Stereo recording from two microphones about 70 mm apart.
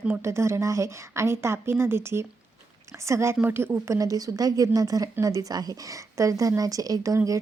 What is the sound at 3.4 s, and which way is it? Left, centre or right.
Speech, right.